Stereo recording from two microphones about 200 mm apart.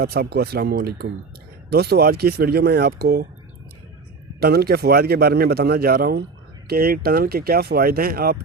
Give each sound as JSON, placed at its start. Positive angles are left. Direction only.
{"t": 0.0, "sound": "a man's voice", "side_deg": -50}
{"t": 4.4, "sound": "a man's voice", "side_deg": -50}